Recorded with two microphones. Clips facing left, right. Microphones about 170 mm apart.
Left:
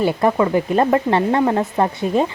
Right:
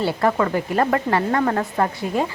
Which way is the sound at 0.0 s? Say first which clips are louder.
Left 3 dB; 20° left (ahead or behind).